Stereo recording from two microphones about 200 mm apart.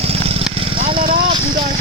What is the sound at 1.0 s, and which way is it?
Vehicle, 45° right (ahead or behind).